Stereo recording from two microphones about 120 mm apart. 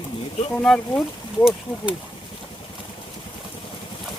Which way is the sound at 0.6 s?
10° left (ahead or behind).